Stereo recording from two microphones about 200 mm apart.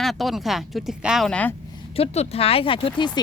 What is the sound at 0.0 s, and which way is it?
Speech, centre (ahead or behind).